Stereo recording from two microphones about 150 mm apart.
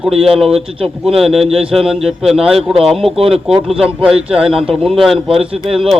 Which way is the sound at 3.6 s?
5° right (ahead or behind).